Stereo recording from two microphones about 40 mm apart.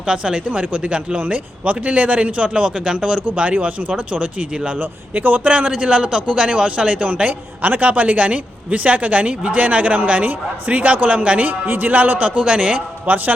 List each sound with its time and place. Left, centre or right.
0.0 s a man's voice: right
3.3 s a man's voice: right
4.8 s speech: right
5.5 s a man's voice: right
12.5 s speech: right
13.1 s speech: right